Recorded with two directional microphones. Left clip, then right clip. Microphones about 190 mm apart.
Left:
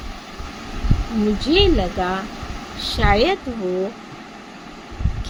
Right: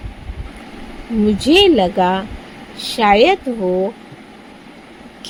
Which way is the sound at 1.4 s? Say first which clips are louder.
Right 6 dB; 35° right (ahead or behind).